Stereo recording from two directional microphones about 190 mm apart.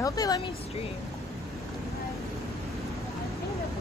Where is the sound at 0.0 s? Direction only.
20° left (ahead or behind).